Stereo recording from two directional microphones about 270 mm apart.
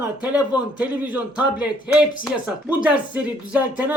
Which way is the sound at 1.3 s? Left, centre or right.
Centre.